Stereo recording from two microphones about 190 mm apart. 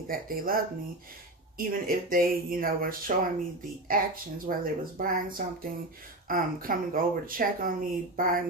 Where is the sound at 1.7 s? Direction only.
50° right (ahead or behind).